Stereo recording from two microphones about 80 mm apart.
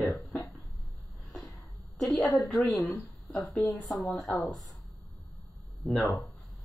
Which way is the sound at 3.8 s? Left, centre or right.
Centre.